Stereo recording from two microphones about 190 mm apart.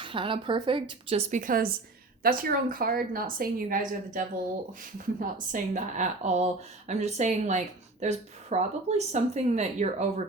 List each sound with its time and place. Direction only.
0.0 s a woman's voice: 25° right (ahead or behind)
1.3 s a woman's voice: 45° right (ahead or behind)
5.2 s a woman's voice: 45° right (ahead or behind)